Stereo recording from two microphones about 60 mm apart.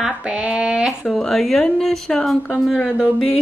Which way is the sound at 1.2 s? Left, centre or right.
Centre.